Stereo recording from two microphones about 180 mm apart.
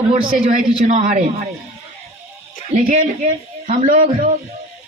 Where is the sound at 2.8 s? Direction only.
45° right (ahead or behind).